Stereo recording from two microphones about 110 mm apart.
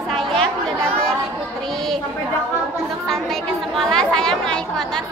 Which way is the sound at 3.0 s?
5° left (ahead or behind).